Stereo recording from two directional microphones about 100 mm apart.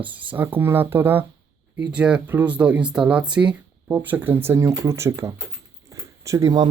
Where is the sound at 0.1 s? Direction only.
15° right (ahead or behind).